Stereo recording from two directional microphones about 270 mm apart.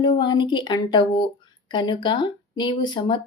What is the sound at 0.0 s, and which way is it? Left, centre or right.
Speech, centre.